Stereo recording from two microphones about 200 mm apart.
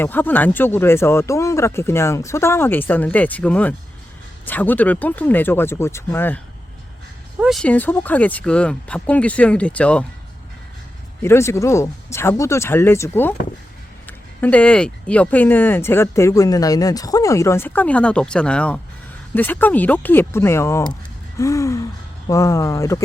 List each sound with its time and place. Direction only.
0.0 s speech: 10° left (ahead or behind)
7.3 s speech: centre (ahead or behind)
11.2 s speech: 15° left (ahead or behind)